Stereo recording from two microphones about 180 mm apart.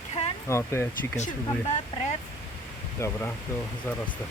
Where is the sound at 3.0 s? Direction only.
10° left (ahead or behind).